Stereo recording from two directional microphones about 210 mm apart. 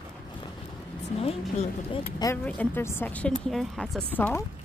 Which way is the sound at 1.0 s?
30° left (ahead or behind).